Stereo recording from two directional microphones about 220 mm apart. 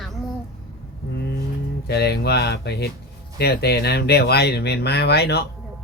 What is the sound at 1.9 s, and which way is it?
Speech, 50° left (ahead or behind).